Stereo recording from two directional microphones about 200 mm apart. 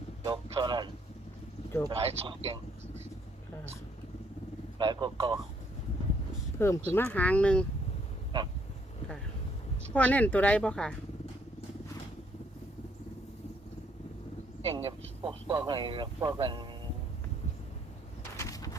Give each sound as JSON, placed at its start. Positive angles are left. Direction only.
{"t": 0.3, "sound": "speech", "side_deg": -20}
{"t": 1.9, "sound": "speech", "side_deg": -30}
{"t": 4.8, "sound": "speech", "side_deg": -25}
{"t": 6.6, "sound": "speech", "side_deg": 10}
{"t": 9.9, "sound": "speech", "side_deg": 5}
{"t": 14.6, "sound": "speech", "side_deg": -30}
{"t": 18.3, "sound": "a sound", "side_deg": 15}